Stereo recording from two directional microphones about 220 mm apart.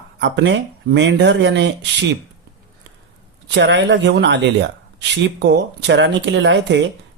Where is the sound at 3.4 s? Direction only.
55° right (ahead or behind).